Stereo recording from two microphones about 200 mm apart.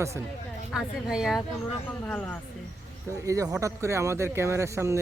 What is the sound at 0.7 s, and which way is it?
Speech, centre (ahead or behind).